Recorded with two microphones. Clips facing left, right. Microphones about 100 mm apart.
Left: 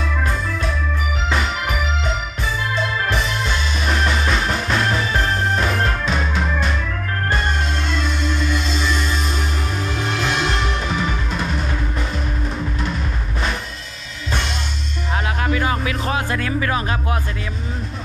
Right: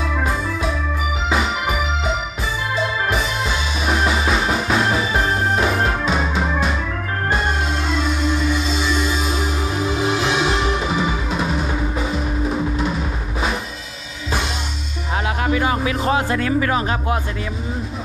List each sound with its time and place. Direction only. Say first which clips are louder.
1.3 s music: right 2 dB; 5° right (ahead or behind)
7.9 s music: right 3 dB; 5° right (ahead or behind)
15.2 s music: right 2 dB; 30° right (ahead or behind)